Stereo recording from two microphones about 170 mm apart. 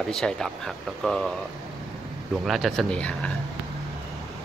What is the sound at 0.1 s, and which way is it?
A man's voice, 5° left (ahead or behind).